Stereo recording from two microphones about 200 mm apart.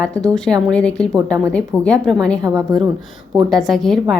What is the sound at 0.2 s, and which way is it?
A woman's voice, 5° left (ahead or behind).